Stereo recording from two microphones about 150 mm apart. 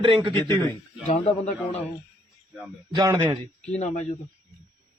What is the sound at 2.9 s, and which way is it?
Speech, 30° right (ahead or behind).